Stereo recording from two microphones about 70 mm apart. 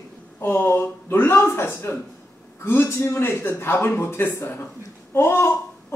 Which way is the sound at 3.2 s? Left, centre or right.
Left.